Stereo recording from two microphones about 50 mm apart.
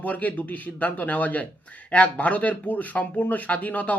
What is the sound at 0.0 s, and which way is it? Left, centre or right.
Speech, left.